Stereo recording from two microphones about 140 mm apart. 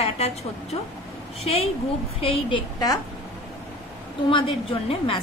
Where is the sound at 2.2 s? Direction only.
40° left (ahead or behind).